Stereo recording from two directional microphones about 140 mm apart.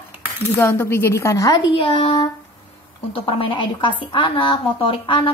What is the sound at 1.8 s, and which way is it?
A woman's voice, 40° left (ahead or behind).